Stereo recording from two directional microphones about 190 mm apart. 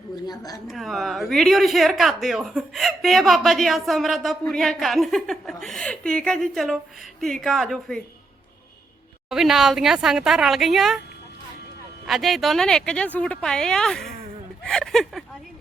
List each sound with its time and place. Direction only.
0.3 s a woman's voice: 20° left (ahead or behind)
0.7 s speech: centre (ahead or behind)
9.3 s speech: centre (ahead or behind)
12.0 s speech: centre (ahead or behind)